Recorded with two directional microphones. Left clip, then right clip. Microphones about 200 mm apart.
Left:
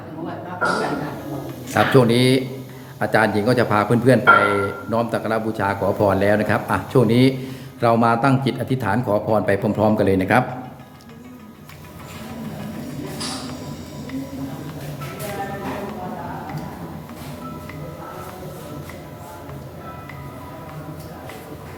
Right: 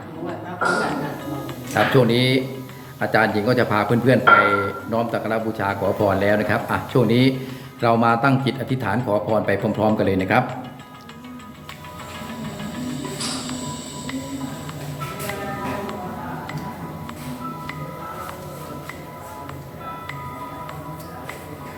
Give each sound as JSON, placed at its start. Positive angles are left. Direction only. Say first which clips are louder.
{"t": 1.7, "sound": "speech", "louder": "left 2 dB", "side_deg": 30}
{"t": 3.0, "sound": "speech", "louder": "left 1 dB", "side_deg": 15}